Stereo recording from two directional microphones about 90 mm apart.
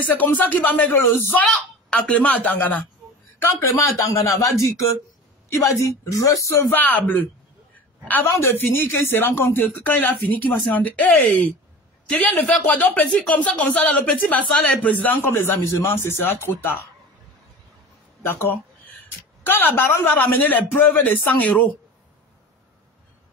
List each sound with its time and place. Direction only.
0.0 s speech: 20° left (ahead or behind)
3.4 s speech: 35° left (ahead or behind)
6.7 s a man's voice: 20° left (ahead or behind)
18.2 s a man's voice: 25° left (ahead or behind)